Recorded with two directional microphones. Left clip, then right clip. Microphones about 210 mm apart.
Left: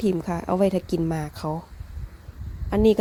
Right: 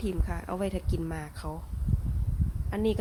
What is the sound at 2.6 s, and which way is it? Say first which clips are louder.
Speech: left 11 dB; 35° left (ahead or behind).